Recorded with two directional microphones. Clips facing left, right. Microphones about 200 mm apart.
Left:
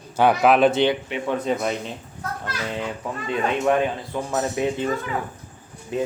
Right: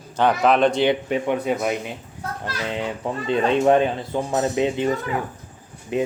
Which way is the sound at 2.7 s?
20° right (ahead or behind).